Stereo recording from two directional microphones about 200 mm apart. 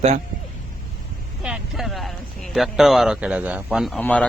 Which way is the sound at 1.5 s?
5° right (ahead or behind).